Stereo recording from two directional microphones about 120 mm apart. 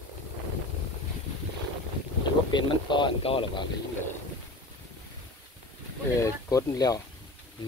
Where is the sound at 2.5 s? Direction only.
40° left (ahead or behind).